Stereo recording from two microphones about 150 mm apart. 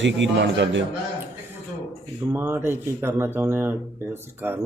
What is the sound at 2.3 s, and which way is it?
Speech, 15° right (ahead or behind).